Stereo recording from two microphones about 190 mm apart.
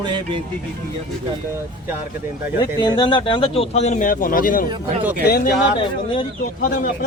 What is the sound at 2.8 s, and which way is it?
Speech, 25° left (ahead or behind).